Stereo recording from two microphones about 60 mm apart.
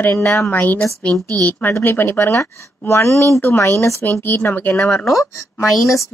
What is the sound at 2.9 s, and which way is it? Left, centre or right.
Speech, left.